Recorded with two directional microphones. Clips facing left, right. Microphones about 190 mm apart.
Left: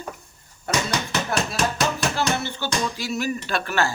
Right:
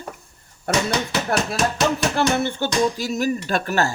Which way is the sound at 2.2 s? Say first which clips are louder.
Right 5 dB; 55° right (ahead or behind).